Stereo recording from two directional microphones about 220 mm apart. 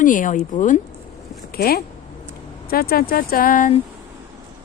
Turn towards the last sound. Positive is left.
turn(degrees=40)  # may be behind; listen again after turning